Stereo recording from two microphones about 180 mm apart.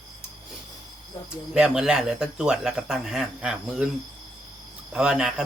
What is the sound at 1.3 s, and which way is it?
Speech, 5° right (ahead or behind).